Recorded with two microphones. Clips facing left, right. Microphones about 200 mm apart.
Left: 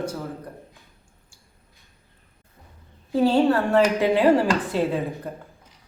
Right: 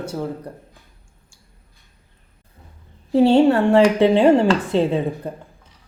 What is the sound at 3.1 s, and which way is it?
A woman's voice, 25° right (ahead or behind).